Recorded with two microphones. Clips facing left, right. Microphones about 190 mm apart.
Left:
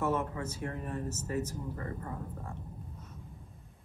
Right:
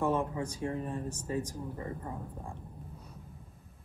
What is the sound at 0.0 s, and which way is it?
Speech, 15° right (ahead or behind).